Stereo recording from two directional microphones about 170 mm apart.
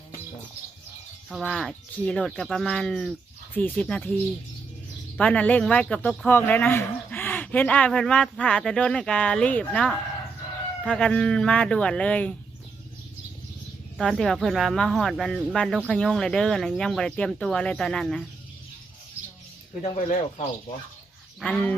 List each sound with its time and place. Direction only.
1.3 s speech: centre (ahead or behind)
5.1 s speech: 5° left (ahead or behind)
14.0 s speech: 5° left (ahead or behind)
19.8 s speech: 40° left (ahead or behind)
21.4 s speech: 10° left (ahead or behind)